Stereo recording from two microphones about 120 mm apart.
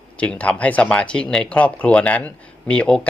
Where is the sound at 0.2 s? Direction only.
10° left (ahead or behind).